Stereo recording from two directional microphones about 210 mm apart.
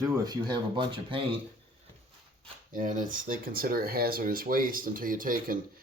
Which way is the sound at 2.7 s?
40° right (ahead or behind).